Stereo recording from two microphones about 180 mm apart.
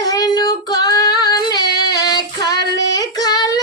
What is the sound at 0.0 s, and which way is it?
Child singing, 20° left (ahead or behind).